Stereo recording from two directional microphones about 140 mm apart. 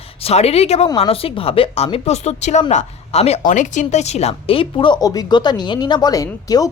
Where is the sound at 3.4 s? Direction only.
65° left (ahead or behind).